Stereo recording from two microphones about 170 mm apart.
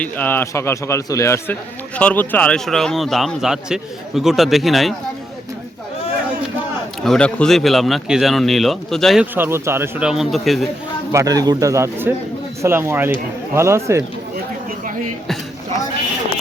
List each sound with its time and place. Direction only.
0.0 s a man's voice: 10° left (ahead or behind)
7.0 s a man's voice: 5° left (ahead or behind)
9.3 s a man's voice: 15° right (ahead or behind)
11.1 s a man's voice: 20° right (ahead or behind)